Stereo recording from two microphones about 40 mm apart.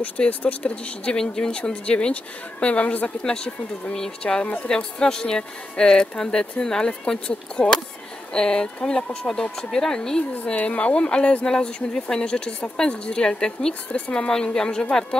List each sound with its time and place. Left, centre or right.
0.5 s speech: left
1.1 s speech: centre
1.6 s speech: left
3.2 s speech: left
10.4 s speech: left; by 13.7 s centre
13.9 s speech: left